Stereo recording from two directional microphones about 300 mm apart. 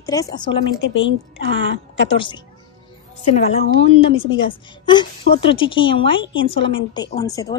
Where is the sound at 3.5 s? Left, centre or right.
Left.